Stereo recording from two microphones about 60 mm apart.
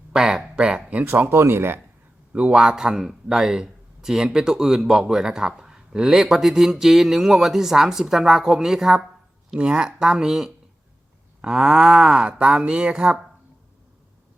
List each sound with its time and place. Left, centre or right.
0.1 s a sound: centre
1.0 s speech: right
1.3 s speech: right
2.3 s a man's voice: centre